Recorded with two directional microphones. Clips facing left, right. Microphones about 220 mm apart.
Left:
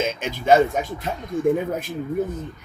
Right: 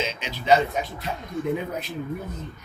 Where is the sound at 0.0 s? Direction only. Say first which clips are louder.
Left 5 dB; 50° left (ahead or behind).